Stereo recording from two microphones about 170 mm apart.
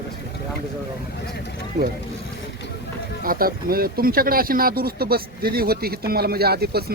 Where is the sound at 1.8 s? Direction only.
75° right (ahead or behind).